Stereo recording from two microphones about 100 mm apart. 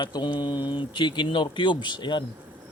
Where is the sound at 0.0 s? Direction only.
50° left (ahead or behind).